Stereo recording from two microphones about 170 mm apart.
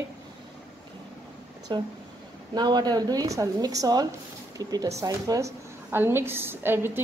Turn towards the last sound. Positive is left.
turn(degrees=-15)  # may be behind; listen again after turning